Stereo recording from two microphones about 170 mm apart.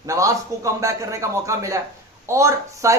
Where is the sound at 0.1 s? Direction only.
20° right (ahead or behind).